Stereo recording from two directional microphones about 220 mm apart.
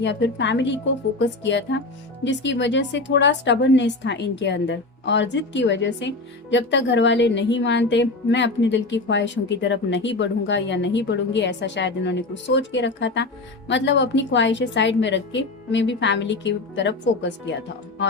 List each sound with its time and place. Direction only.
0.0 s a woman's voice: 55° left (ahead or behind)